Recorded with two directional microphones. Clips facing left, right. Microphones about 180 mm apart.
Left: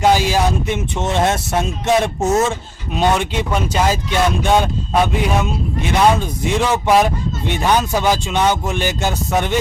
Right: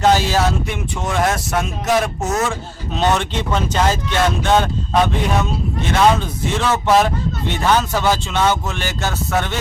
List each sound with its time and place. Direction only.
0.0 s speech: 15° left (ahead or behind)
2.9 s speech: 10° left (ahead or behind)
5.9 s speech: 15° left (ahead or behind)